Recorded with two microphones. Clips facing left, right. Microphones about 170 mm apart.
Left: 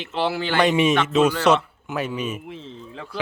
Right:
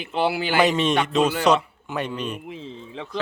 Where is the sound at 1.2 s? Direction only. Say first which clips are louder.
Left 4 dB; 10° right (ahead or behind).